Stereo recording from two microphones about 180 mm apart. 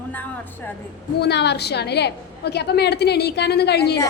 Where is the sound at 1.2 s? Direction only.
70° left (ahead or behind).